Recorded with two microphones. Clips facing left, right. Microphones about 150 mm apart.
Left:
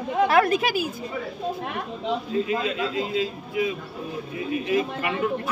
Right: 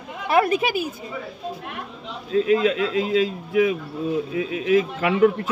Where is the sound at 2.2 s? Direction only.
90° right.